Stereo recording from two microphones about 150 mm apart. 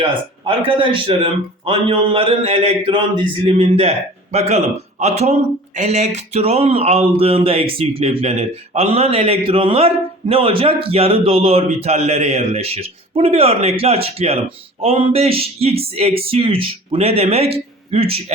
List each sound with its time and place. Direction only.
0.0 s a man's voice: 35° right (ahead or behind)